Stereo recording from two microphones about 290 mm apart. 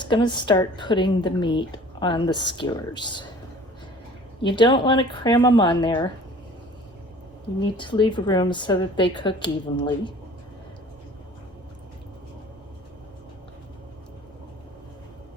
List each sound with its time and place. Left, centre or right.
0.0 s speech: centre
4.4 s speech: centre
7.6 s speech: centre